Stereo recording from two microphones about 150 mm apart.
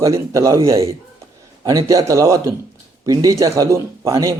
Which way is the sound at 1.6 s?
25° right (ahead or behind).